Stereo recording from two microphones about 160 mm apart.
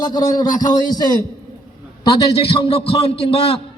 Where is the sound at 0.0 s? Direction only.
25° left (ahead or behind).